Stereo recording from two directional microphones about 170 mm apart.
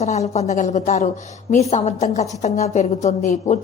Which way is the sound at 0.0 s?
40° left (ahead or behind).